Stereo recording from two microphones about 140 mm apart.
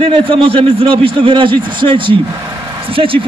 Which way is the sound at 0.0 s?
40° right (ahead or behind).